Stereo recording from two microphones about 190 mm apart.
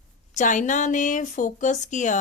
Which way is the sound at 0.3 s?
40° left (ahead or behind).